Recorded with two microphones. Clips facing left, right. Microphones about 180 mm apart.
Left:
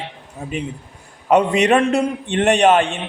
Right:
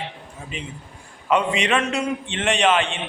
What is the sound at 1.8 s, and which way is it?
A man's voice, 55° left (ahead or behind).